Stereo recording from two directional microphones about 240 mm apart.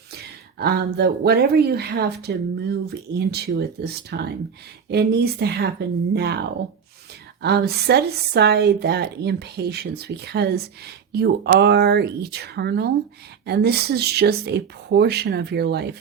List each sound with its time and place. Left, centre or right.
0.6 s speech: right
7.4 s speech: right